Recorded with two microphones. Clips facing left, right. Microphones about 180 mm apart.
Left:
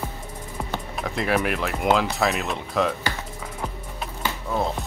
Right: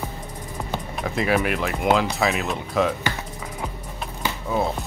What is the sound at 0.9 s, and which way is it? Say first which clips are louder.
Speech: right 2 dB; centre (ahead or behind).